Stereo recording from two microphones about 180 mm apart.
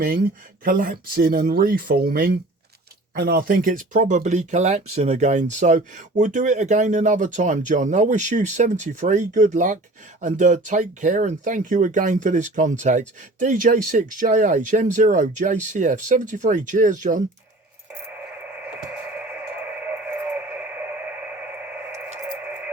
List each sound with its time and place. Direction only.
0.6 s speech: 50° right (ahead or behind)
20.6 s radio: 10° right (ahead or behind)